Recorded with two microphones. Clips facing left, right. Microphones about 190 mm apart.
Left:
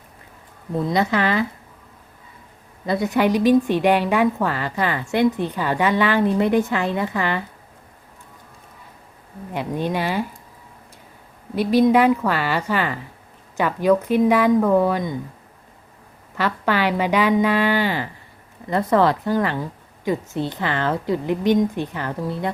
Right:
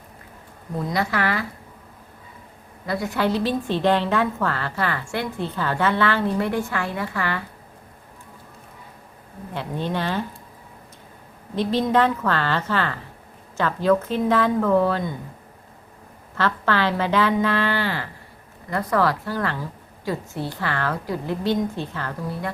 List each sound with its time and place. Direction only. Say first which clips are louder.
0.9 s a woman's voice: left 4 dB; 20° left (ahead or behind)
2.8 s a woman's voice: left 4 dB; 20° left (ahead or behind)
9.5 s a woman's voice: left 3 dB; 15° left (ahead or behind)
11.5 s a woman's voice: left 5 dB; 10° left (ahead or behind)
16.4 s a woman's voice: left 1 dB; 15° left (ahead or behind)